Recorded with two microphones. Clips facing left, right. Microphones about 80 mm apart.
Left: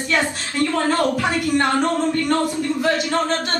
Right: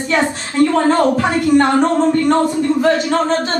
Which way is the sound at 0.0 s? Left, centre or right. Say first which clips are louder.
Right 5 dB; centre.